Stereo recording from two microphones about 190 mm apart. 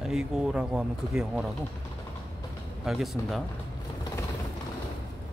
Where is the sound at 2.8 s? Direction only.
Centre (ahead or behind).